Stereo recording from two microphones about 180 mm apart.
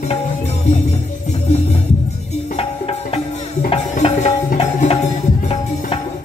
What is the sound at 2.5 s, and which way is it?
Music, 30° left (ahead or behind).